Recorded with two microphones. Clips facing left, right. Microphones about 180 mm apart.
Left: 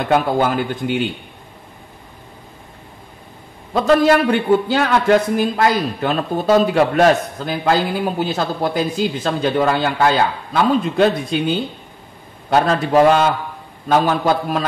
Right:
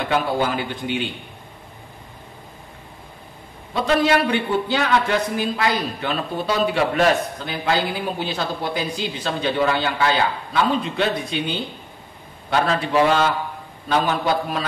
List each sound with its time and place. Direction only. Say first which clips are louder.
0.1 s a man's voice: left 5 dB; 45° left (ahead or behind)
3.7 s a man's voice: left 5 dB; 45° left (ahead or behind)